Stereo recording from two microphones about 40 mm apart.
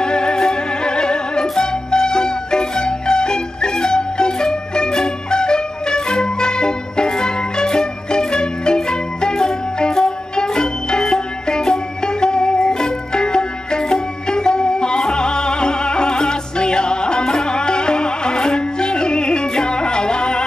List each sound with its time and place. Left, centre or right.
0.0 s music: centre